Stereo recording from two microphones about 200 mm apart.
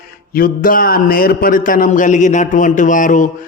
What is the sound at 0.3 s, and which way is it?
A man's voice, 45° left (ahead or behind).